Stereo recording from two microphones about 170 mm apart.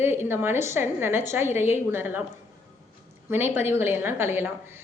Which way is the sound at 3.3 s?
10° right (ahead or behind).